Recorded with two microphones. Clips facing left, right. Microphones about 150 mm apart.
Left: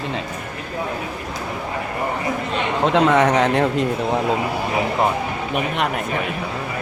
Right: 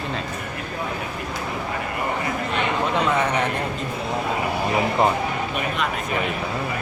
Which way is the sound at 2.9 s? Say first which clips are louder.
Left 8 dB; 90° left.